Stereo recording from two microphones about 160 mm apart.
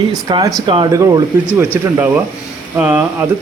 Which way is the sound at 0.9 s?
20° right (ahead or behind).